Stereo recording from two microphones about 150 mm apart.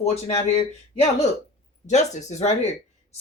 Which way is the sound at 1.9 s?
50° left (ahead or behind).